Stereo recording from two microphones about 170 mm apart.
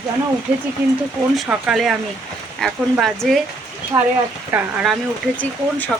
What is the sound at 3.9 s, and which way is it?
Speech, 20° right (ahead or behind).